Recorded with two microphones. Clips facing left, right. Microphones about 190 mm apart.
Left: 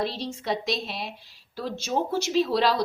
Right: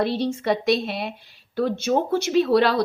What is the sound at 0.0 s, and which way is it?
A woman's voice, 60° right (ahead or behind).